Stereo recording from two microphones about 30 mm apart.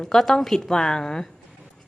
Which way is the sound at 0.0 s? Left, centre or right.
Centre.